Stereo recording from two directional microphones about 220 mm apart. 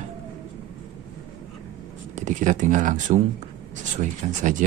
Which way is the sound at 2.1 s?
35° right (ahead or behind).